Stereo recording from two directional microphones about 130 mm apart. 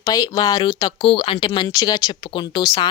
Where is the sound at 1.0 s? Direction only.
45° left (ahead or behind).